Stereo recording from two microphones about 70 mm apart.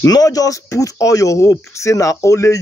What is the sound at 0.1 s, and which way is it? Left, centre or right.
Speech, left.